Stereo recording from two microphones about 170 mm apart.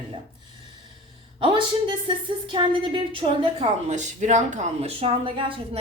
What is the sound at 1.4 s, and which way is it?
A woman's voice, 30° right (ahead or behind).